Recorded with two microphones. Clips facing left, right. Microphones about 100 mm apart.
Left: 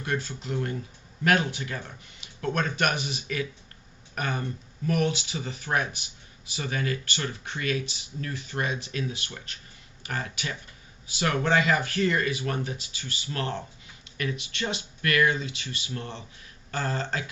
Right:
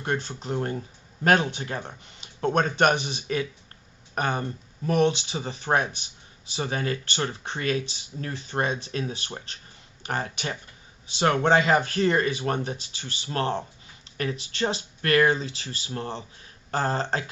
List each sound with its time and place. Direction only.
0.0 s speech: 35° right (ahead or behind)